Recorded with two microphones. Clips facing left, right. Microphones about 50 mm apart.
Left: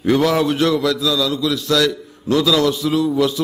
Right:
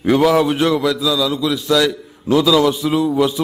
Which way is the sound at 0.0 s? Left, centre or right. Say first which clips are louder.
Right 2 dB; centre.